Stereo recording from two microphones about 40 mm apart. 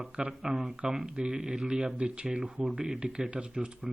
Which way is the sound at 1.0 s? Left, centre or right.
Right.